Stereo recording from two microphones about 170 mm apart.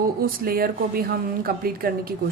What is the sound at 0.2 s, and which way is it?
A woman's voice, 60° right (ahead or behind).